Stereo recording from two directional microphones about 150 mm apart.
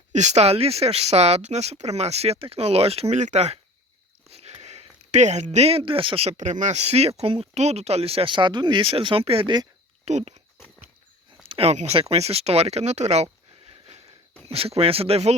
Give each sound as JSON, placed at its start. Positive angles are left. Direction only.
{"t": 0.1, "sound": "speech", "side_deg": -50}
{"t": 4.3, "sound": "a sound", "side_deg": -45}
{"t": 6.3, "sound": "speech", "side_deg": -55}
{"t": 10.1, "sound": "speech", "side_deg": -50}
{"t": 11.4, "sound": "speech", "side_deg": -40}